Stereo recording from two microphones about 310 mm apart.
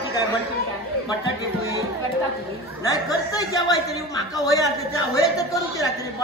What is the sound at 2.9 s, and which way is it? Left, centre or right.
A man's voice, centre.